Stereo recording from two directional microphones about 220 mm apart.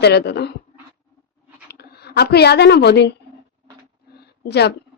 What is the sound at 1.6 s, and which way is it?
A woman's voice, 45° left (ahead or behind).